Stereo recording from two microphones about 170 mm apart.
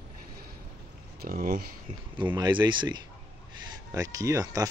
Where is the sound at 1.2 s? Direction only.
55° right (ahead or behind).